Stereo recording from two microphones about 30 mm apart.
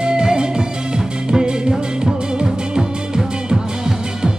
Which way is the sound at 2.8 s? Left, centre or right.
Centre.